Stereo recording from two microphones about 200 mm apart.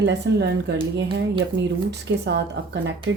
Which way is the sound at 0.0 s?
60° right (ahead or behind).